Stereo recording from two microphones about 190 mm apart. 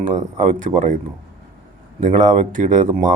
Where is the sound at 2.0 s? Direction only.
40° right (ahead or behind).